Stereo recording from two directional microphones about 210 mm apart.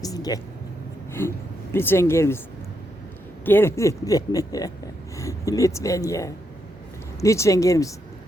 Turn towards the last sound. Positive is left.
turn(degrees=15)  # may be behind; listen again after turning